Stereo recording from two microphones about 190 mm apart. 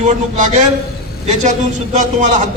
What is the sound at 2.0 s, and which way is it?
Speech, 40° right (ahead or behind).